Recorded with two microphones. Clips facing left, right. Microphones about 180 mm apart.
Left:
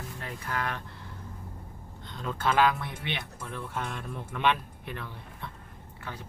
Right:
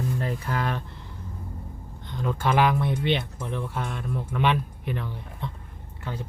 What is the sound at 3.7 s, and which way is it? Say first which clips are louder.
Speech: right 4 dB; 10° right (ahead or behind).